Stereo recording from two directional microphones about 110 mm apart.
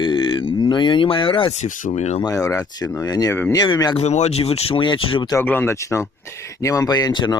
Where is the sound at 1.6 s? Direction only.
90° left.